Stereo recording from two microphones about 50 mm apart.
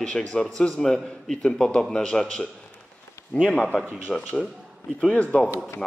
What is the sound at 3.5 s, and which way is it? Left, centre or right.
Speech, centre.